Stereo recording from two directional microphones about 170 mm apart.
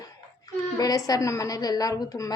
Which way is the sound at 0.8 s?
20° left (ahead or behind).